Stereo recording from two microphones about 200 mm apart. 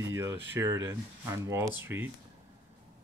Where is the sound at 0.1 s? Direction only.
10° right (ahead or behind).